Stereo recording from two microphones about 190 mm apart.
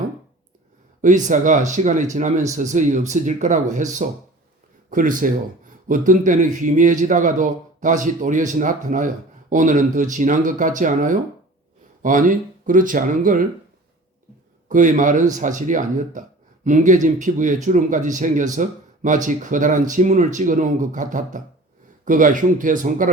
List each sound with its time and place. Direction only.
1.0 s a man's voice: 40° right (ahead or behind)
14.7 s a man's voice: 40° right (ahead or behind)